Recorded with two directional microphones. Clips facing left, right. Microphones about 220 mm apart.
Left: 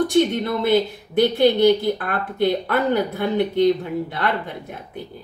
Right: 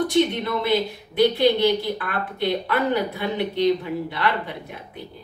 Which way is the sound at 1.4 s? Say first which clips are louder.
Left 4 dB; 50° left (ahead or behind).